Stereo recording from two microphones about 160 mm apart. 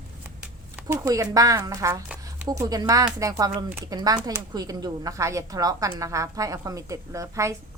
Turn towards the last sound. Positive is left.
turn(degrees=-20)  # may be behind; listen again after turning